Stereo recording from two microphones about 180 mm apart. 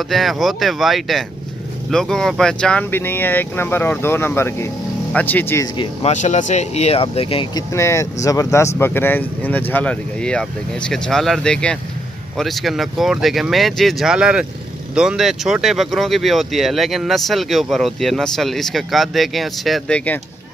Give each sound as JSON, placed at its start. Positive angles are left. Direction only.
{"t": 0.1, "sound": "speech", "side_deg": 0}
{"t": 5.8, "sound": "speech", "side_deg": 40}
{"t": 7.7, "sound": "speech", "side_deg": 15}